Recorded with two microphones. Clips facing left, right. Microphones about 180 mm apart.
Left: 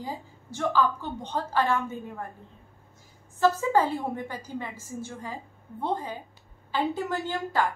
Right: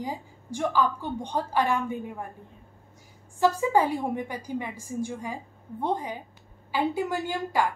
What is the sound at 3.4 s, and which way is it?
A woman's voice, 15° right (ahead or behind).